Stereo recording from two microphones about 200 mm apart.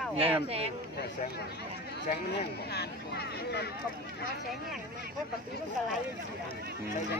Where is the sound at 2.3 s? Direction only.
55° left (ahead or behind).